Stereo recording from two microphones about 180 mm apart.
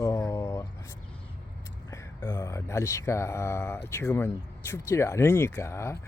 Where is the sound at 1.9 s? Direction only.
15° left (ahead or behind).